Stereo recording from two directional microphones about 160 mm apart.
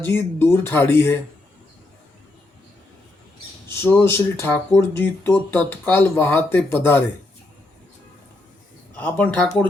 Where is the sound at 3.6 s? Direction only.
15° left (ahead or behind).